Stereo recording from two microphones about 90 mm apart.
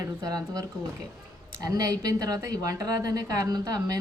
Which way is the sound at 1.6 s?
40° right (ahead or behind).